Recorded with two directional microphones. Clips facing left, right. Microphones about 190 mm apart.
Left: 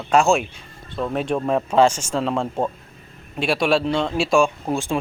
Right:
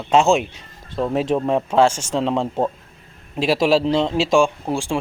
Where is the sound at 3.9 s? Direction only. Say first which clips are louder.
Right 2 dB; 20° right (ahead or behind).